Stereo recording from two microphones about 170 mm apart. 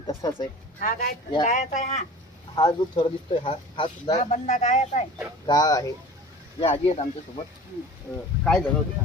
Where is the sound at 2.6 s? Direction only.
25° left (ahead or behind).